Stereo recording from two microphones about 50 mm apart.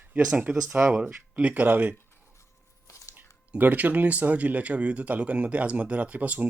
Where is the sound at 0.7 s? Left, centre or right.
Right.